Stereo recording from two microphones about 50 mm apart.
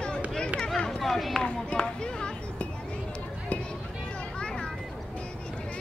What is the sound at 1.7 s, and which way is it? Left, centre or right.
Speech, centre.